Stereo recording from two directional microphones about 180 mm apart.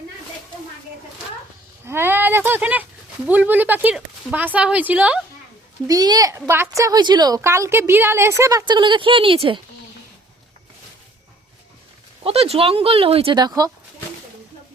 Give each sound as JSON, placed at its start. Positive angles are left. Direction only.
{"t": 1.9, "sound": "a sound", "side_deg": -10}
{"t": 3.2, "sound": "speech", "side_deg": -10}
{"t": 5.9, "sound": "a woman's voice", "side_deg": -20}
{"t": 12.2, "sound": "speech", "side_deg": -35}